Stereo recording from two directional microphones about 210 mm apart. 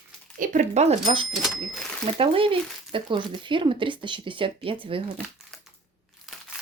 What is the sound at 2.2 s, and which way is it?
Speech, 25° right (ahead or behind).